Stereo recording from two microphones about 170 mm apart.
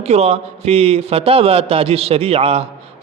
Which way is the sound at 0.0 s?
40° right (ahead or behind).